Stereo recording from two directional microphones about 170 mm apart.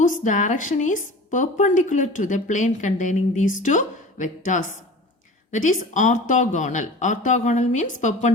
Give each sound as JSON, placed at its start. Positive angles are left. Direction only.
{"t": 0.0, "sound": "a woman's voice", "side_deg": 50}